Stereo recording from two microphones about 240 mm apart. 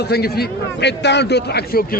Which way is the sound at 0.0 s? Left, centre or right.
Left.